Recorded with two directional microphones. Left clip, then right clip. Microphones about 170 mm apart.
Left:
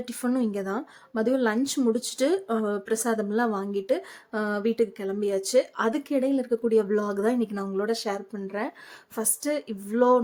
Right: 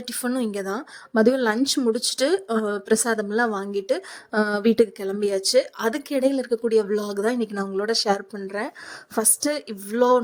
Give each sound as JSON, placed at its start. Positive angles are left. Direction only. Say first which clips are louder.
{"t": 0.0, "sound": "speech", "louder": "right 2 dB", "side_deg": -40}